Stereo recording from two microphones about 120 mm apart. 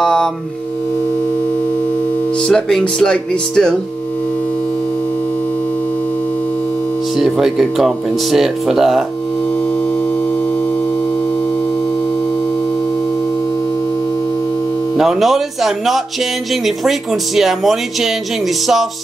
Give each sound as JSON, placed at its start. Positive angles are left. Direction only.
{"t": 0.0, "sound": "music", "side_deg": 5}
{"t": 2.4, "sound": "speech", "side_deg": 5}
{"t": 7.2, "sound": "speech", "side_deg": -5}
{"t": 15.0, "sound": "speech", "side_deg": 0}